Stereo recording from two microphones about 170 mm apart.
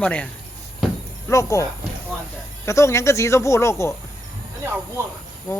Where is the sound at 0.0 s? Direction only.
5° left (ahead or behind).